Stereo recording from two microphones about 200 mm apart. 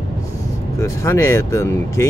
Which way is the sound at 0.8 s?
15° left (ahead or behind).